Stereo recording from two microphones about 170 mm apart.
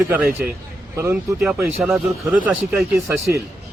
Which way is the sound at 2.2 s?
10° right (ahead or behind).